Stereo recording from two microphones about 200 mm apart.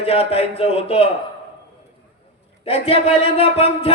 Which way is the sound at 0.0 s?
30° left (ahead or behind).